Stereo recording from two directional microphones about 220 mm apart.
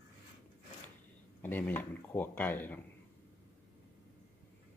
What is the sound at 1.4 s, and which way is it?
Speech, 10° left (ahead or behind).